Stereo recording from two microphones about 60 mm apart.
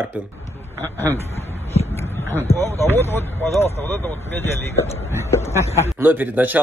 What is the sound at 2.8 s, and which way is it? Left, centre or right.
Speech, left.